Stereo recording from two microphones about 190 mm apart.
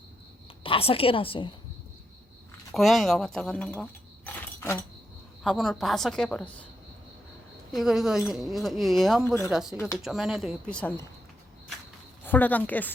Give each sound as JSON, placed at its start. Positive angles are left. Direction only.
{"t": 0.6, "sound": "a woman's voice", "side_deg": 30}
{"t": 2.7, "sound": "speech", "side_deg": 0}
{"t": 4.4, "sound": "a sound", "side_deg": 15}
{"t": 5.4, "sound": "speech", "side_deg": 0}
{"t": 7.8, "sound": "speech", "side_deg": 0}
{"t": 12.2, "sound": "a woman's voice", "side_deg": 10}